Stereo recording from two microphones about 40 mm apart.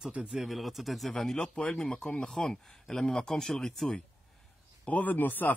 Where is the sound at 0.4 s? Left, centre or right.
Centre.